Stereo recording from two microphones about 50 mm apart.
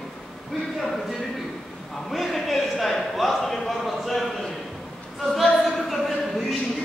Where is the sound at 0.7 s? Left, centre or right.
Centre.